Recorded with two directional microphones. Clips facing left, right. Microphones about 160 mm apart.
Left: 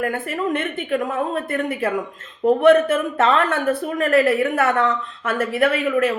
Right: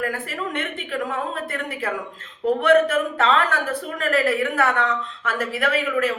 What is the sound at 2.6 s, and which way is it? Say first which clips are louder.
A woman's voice: left 2 dB; 25° left (ahead or behind).